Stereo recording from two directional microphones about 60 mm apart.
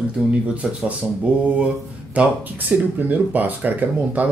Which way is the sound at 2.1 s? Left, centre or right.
Right.